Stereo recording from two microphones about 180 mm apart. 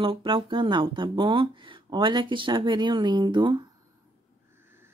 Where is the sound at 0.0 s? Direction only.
30° right (ahead or behind).